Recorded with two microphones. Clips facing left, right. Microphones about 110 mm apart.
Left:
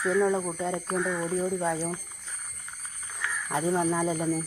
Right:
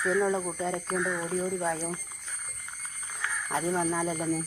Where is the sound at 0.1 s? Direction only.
5° left (ahead or behind).